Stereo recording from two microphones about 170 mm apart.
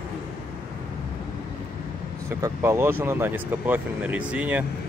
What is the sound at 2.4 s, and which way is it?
Speech, 15° right (ahead or behind).